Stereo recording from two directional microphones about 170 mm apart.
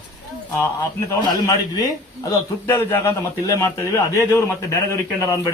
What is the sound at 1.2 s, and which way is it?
A man's voice, 20° left (ahead or behind).